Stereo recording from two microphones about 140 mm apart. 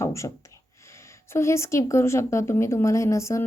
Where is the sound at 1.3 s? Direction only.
20° left (ahead or behind).